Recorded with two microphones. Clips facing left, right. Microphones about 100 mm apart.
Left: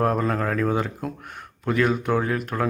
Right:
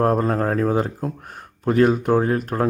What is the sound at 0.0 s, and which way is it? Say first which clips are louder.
A man's voice: right 3 dB; 35° right (ahead or behind).